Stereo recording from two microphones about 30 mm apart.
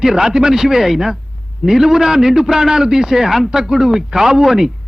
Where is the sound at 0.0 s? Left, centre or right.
Centre.